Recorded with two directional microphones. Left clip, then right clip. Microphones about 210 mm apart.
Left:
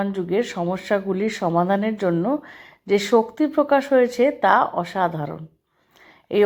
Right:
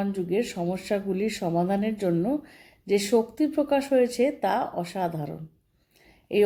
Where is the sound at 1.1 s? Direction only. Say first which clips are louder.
Left 4 dB; 45° left (ahead or behind).